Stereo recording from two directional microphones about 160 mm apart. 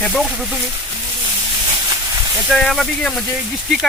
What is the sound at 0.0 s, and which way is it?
Speech, 5° left (ahead or behind).